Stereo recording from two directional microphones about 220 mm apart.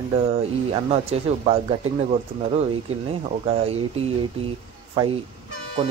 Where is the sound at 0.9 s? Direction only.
30° right (ahead or behind).